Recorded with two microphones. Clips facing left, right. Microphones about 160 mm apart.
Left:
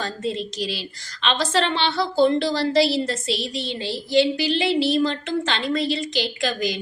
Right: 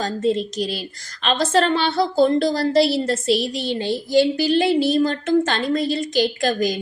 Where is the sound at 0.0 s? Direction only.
45° right (ahead or behind).